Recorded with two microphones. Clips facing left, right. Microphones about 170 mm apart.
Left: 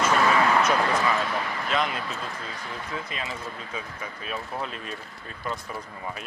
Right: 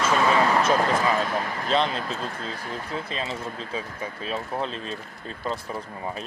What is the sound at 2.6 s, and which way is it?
Speech, 40° right (ahead or behind).